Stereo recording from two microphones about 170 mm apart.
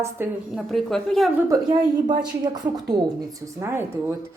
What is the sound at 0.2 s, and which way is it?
Speech, 15° right (ahead or behind).